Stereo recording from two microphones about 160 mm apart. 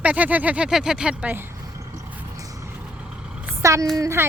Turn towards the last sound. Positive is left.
turn(degrees=-15)  # may be behind; listen again after turning